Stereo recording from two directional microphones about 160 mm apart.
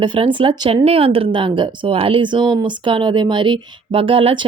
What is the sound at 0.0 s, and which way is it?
Speech, 30° right (ahead or behind).